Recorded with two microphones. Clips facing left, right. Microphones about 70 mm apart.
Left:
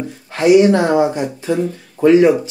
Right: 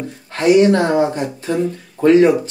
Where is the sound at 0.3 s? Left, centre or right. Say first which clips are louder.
Left 1 dB; centre.